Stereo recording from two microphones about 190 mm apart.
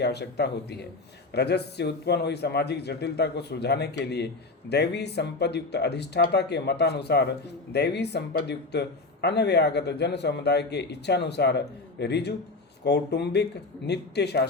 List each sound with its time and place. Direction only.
0.0 s speech: 60° left (ahead or behind)